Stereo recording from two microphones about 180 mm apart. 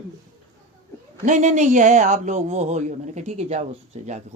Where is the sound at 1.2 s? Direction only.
40° right (ahead or behind).